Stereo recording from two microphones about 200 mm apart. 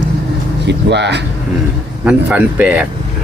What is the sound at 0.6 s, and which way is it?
Speech, 60° right (ahead or behind).